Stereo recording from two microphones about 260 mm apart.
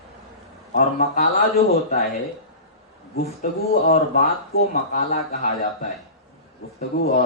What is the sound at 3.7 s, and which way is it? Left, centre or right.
A man's voice, left.